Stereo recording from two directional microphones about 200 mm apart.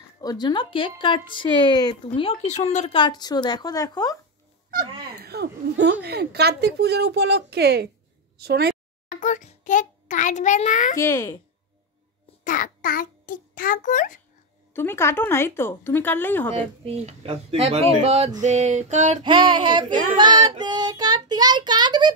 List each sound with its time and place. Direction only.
0.2 s speech: 20° left (ahead or behind)
4.6 s a woman's voice: 50° right (ahead or behind)
9.1 s a sound: 40° left (ahead or behind)
11.0 s speech: 15° left (ahead or behind)
12.4 s a child's voice: 40° left (ahead or behind)
14.7 s speech: 10° left (ahead or behind)
16.8 s speech: 30° right (ahead or behind)
19.2 s child singing: 25° right (ahead or behind)